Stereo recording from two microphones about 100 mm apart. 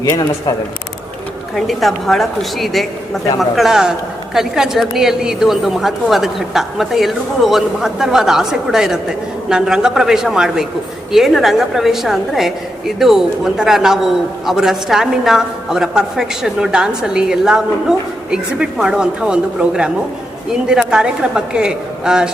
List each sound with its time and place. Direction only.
0.0 s speech: 45° left (ahead or behind)
1.5 s a woman's voice: centre (ahead or behind)